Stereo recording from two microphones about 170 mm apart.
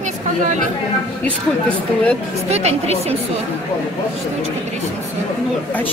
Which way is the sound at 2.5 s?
40° right (ahead or behind).